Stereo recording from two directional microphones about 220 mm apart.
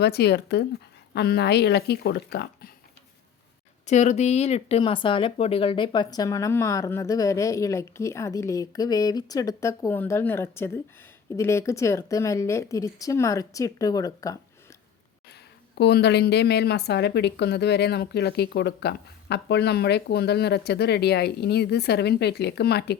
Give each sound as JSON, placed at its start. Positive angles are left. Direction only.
{"t": 0.0, "sound": "a woman's voice", "side_deg": 50}
{"t": 3.8, "sound": "speech", "side_deg": 30}
{"t": 15.8, "sound": "a woman's voice", "side_deg": 50}